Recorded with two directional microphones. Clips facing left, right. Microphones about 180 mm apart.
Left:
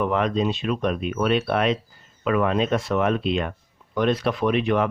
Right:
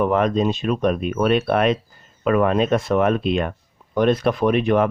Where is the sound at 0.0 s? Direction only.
45° right (ahead or behind).